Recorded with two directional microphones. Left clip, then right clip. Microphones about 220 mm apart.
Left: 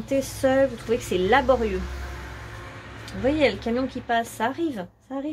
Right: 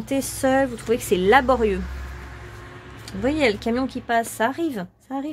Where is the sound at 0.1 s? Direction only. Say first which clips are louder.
Right 1 dB; 40° right (ahead or behind).